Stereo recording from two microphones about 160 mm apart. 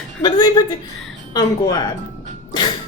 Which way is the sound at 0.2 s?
25° left (ahead or behind).